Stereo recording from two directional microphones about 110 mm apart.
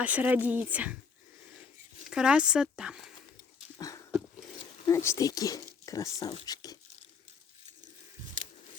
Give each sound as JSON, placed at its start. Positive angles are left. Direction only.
{"t": 0.0, "sound": "speech", "side_deg": -15}
{"t": 2.0, "sound": "speech", "side_deg": -10}
{"t": 3.8, "sound": "dog", "side_deg": 30}
{"t": 4.9, "sound": "speech", "side_deg": 25}
{"t": 6.4, "sound": "a sound", "side_deg": 35}